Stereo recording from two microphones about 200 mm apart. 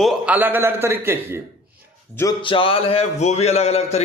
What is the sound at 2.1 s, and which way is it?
Speech, 20° left (ahead or behind).